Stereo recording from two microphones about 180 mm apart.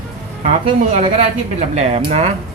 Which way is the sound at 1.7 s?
35° right (ahead or behind).